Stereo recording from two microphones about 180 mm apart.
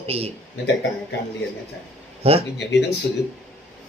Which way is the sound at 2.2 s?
35° right (ahead or behind).